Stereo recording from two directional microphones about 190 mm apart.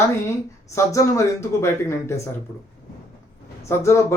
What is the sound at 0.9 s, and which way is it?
Speech, 15° left (ahead or behind).